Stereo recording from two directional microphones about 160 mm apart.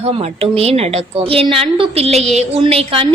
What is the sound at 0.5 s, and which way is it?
A woman's voice, 40° right (ahead or behind).